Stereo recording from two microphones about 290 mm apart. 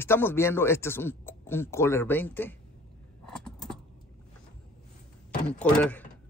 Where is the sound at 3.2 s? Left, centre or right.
Centre.